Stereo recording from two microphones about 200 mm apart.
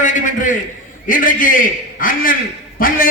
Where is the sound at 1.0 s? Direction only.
40° left (ahead or behind).